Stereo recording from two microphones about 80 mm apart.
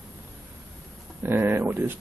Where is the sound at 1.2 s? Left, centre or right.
Right.